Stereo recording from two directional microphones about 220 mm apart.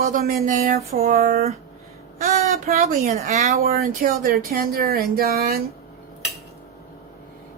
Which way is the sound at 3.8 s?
40° right (ahead or behind).